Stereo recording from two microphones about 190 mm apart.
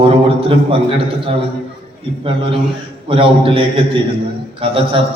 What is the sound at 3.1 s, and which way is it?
A man's voice, 30° right (ahead or behind).